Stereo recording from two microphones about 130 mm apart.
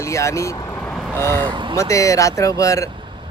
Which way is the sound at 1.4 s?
40° right (ahead or behind).